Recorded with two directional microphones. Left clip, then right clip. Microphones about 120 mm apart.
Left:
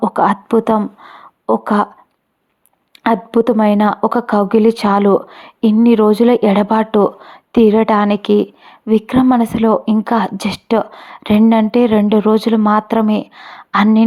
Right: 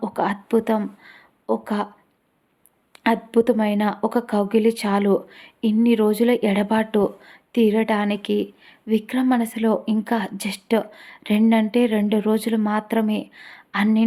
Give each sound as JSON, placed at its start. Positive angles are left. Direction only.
{"t": 0.0, "sound": "speech", "side_deg": 45}
{"t": 3.0, "sound": "a woman's voice", "side_deg": 40}